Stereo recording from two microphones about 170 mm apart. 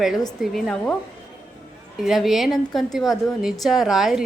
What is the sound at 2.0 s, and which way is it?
A woman's voice, centre (ahead or behind).